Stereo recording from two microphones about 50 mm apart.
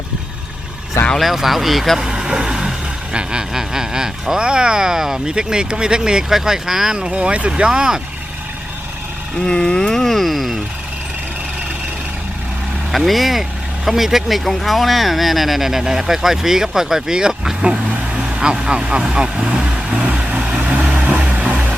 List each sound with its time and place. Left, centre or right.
1.2 s speech: centre
6.9 s speech: right
9.5 s a sound: centre
12.9 s a sound: centre
13.8 s speech: centre; by 20.7 s right
20.8 s vehicle: right